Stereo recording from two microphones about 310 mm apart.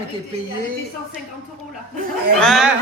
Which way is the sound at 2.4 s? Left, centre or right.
Centre.